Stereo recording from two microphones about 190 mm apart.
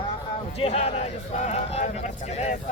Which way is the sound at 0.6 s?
30° left (ahead or behind).